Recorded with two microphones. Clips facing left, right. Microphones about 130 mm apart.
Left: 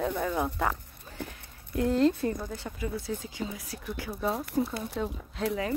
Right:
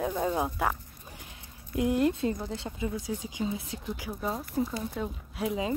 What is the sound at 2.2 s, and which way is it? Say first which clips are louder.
Speech: right 1 dB; 20° right (ahead or behind).